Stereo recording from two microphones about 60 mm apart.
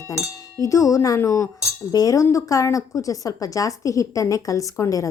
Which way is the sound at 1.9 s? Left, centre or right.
Left.